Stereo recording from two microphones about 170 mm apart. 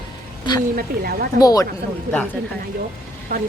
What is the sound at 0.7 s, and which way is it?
Speech, 65° right (ahead or behind).